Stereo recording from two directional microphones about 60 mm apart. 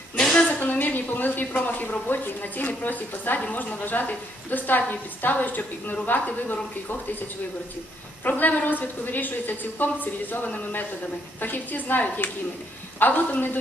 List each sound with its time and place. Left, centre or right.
0.4 s a woman's voice: left
8.2 s a woman's voice: left